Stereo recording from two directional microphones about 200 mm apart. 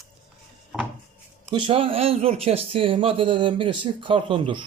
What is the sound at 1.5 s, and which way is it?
Speech, 25° right (ahead or behind).